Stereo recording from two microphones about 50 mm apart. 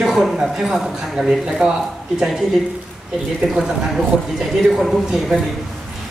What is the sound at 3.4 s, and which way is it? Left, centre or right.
Speech, centre.